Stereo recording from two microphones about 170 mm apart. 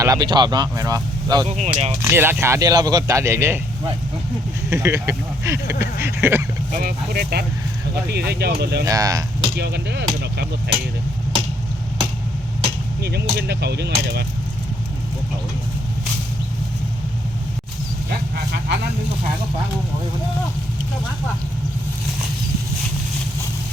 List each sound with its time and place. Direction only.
0.0 s speech: 25° right (ahead or behind)
1.5 s speech: 40° right (ahead or behind)
1.9 s speech: 15° right (ahead or behind)
4.7 s speech: 15° right (ahead or behind)
6.7 s speech: 55° right (ahead or behind); by 8.8 s 75° right (ahead or behind)
8.8 s speech: 20° right (ahead or behind)
9.6 s speech: 75° right (ahead or behind)
13.0 s speech: 70° right (ahead or behind)